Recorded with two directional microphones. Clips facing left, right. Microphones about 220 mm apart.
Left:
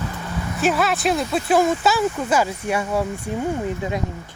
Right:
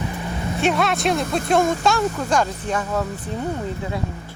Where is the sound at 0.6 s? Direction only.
Centre (ahead or behind).